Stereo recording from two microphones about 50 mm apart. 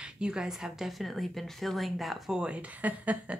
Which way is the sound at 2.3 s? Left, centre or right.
Right.